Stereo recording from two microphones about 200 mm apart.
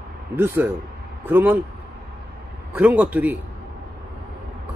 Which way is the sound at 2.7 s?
5° right (ahead or behind).